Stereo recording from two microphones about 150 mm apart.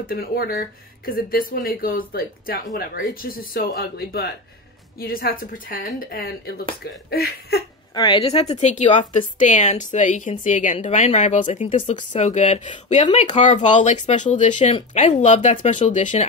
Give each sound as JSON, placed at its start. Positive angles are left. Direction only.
{"t": 0.0, "sound": "speech", "side_deg": 80}
{"t": 7.9, "sound": "a woman's voice", "side_deg": 25}
{"t": 8.2, "sound": "a woman's voice", "side_deg": 45}